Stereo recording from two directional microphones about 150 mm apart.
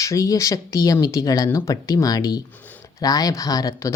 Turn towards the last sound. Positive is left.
turn(degrees=25)  # may be behind; listen again after turning